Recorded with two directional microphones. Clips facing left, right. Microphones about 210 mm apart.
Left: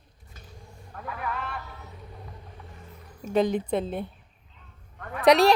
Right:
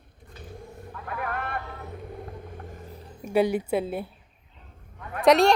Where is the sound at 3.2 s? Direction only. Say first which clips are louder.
Right 1 dB; 10° right (ahead or behind).